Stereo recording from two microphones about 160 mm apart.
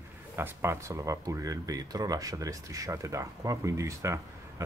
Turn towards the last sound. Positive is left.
turn(degrees=-20)  # may be behind; listen again after turning